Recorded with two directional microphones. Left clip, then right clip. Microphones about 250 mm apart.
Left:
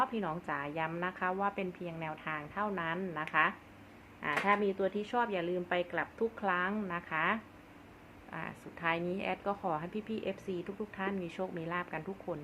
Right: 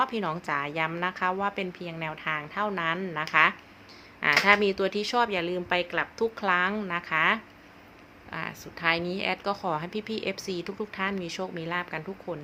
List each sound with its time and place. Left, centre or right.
0.0 s a woman's voice: right